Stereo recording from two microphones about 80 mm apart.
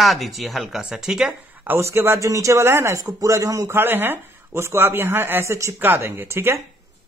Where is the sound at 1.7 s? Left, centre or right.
Right.